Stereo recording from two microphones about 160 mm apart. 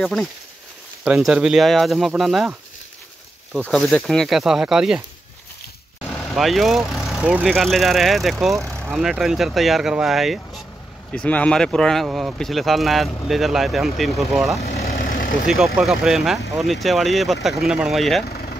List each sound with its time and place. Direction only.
0.0 s speech: centre (ahead or behind)
3.5 s speech: 5° left (ahead or behind)
6.0 s vehicle: 10° left (ahead or behind)
6.3 s speech: centre (ahead or behind)
14.7 s vehicle: 75° left (ahead or behind)
15.4 s speech: centre (ahead or behind)